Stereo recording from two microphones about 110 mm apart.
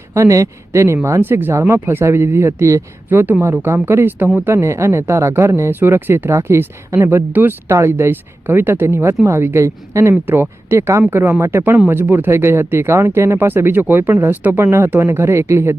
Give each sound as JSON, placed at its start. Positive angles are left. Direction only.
{"t": 0.1, "sound": "speech", "side_deg": -30}